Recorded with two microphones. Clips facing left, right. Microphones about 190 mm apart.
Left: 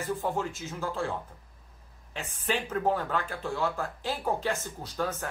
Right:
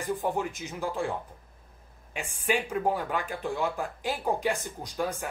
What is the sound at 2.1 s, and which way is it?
Speech, 10° right (ahead or behind).